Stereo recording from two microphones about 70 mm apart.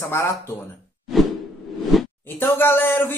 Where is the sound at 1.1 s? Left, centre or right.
Centre.